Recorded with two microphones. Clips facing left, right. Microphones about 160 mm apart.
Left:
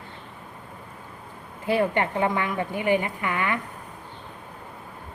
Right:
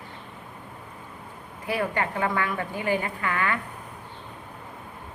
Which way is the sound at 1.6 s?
25° left (ahead or behind).